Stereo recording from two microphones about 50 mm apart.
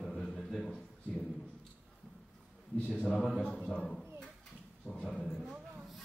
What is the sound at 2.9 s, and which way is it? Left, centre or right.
Speech, centre.